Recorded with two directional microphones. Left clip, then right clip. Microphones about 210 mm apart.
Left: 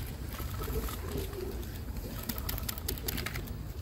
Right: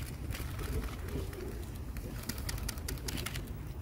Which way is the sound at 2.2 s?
50° right (ahead or behind).